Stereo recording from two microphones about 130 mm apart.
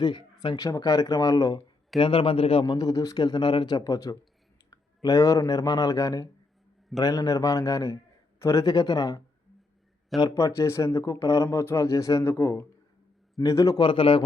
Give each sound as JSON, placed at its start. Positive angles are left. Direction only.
{"t": 0.0, "sound": "speech", "side_deg": 35}
{"t": 2.0, "sound": "a man's voice", "side_deg": 40}
{"t": 2.6, "sound": "speech", "side_deg": 30}
{"t": 13.8, "sound": "a man's voice", "side_deg": 40}